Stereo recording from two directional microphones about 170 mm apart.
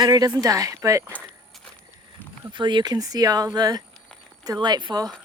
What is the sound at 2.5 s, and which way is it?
Speech, 25° right (ahead or behind).